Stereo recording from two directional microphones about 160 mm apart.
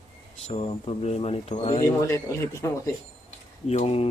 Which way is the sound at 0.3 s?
40° left (ahead or behind).